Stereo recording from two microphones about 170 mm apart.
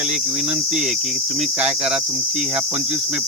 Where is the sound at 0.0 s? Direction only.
5° right (ahead or behind).